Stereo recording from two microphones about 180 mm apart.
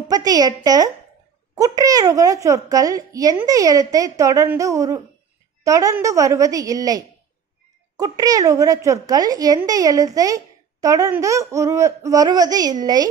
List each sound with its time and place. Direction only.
0.1 s a child's voice: 20° right (ahead or behind)